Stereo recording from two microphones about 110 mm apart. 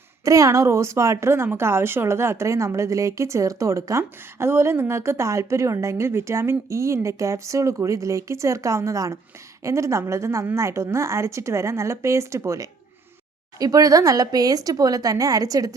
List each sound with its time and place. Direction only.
0.3 s a woman's voice: 30° right (ahead or behind)